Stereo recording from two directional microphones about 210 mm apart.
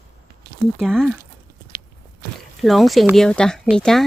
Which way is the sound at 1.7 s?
45° right (ahead or behind).